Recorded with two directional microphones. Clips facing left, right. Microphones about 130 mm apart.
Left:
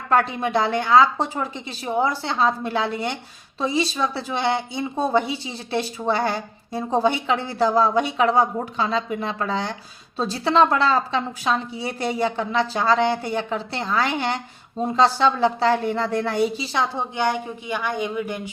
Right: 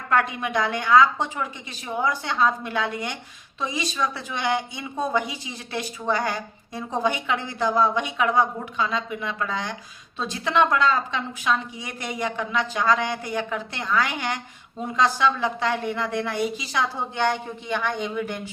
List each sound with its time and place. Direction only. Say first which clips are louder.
0.1 s a woman's voice: left 3 dB; 30° left (ahead or behind); by 18.5 s 10° left (ahead or behind)